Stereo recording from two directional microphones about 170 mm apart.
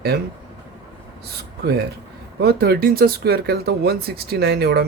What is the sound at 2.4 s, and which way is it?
Speech, 65° right (ahead or behind).